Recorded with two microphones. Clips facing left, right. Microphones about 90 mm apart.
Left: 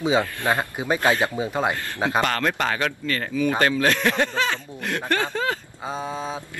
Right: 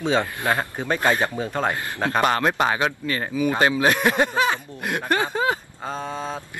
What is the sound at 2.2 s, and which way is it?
Speech, 20° right (ahead or behind).